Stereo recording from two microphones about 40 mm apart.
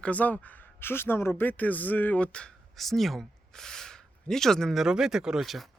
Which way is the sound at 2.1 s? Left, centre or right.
Left.